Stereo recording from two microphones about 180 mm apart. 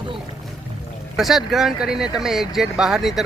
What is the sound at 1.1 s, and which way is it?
Speech, centre (ahead or behind).